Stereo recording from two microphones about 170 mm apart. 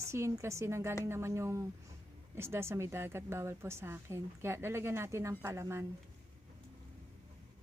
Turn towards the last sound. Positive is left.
turn(degrees=-15)  # may be behind; listen again after turning